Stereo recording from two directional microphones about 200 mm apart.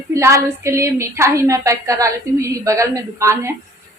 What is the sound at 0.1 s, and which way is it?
A woman's voice, 15° right (ahead or behind).